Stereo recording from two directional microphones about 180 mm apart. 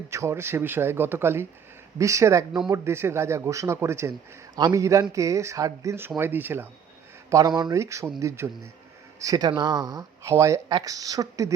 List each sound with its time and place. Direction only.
0.1 s speech: 15° right (ahead or behind)